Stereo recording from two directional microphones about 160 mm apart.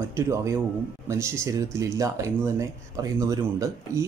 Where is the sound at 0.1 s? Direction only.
20° right (ahead or behind).